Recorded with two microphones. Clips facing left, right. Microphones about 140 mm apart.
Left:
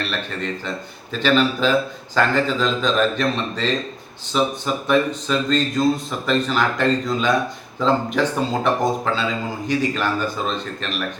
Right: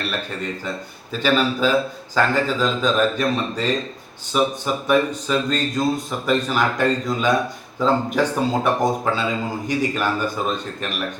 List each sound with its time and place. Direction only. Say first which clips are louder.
1.2 s speech: left 1 dB; 10° right (ahead or behind)